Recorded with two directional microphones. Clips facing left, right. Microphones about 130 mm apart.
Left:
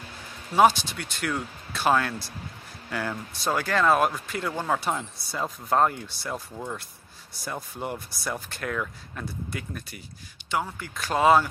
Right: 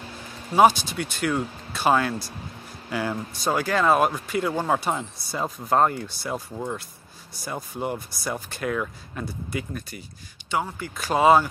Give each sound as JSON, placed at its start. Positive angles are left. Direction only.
{"t": 0.6, "sound": "speech", "side_deg": -5}
{"t": 4.5, "sound": "speech", "side_deg": -20}
{"t": 4.7, "sound": "speech", "side_deg": 0}